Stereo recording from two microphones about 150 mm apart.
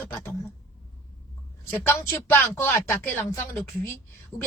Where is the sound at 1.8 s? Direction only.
15° left (ahead or behind).